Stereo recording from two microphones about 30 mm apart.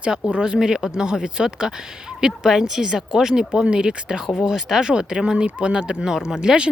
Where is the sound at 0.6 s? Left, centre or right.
Centre.